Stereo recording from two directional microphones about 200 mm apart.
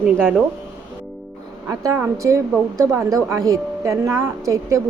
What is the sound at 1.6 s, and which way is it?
A woman's voice, 15° right (ahead or behind).